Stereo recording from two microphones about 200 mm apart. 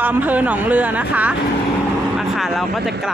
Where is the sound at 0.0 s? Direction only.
10° right (ahead or behind).